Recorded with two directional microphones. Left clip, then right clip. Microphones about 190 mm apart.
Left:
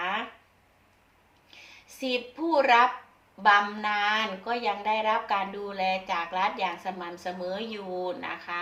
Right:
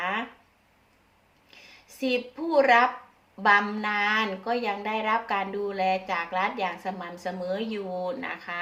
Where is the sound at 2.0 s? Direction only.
20° right (ahead or behind).